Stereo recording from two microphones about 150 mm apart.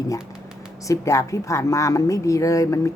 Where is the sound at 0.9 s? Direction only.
20° left (ahead or behind).